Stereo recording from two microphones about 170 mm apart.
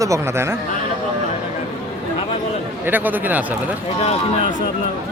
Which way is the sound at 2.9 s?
10° right (ahead or behind).